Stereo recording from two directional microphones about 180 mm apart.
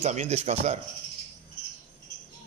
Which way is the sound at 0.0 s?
40° right (ahead or behind).